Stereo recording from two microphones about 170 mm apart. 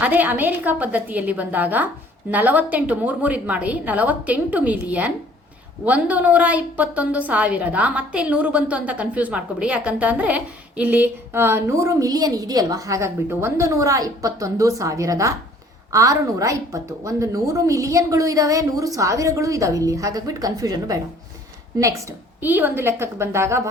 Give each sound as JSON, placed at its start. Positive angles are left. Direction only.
{"t": 0.0, "sound": "a woman's voice", "side_deg": -10}